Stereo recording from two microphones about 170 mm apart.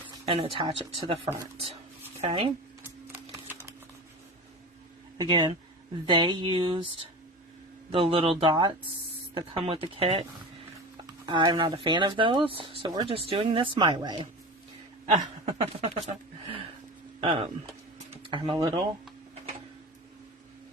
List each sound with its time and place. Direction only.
0.3 s speech: 35° right (ahead or behind)
3.1 s typewriter: 15° right (ahead or behind)
5.1 s speech: 25° right (ahead or behind)
15.1 s speech: 40° right (ahead or behind)
17.2 s speech: 30° right (ahead or behind)
17.9 s a sound: 35° right (ahead or behind)